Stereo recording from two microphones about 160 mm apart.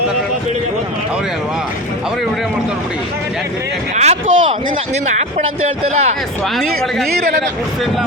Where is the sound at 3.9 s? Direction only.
45° right (ahead or behind).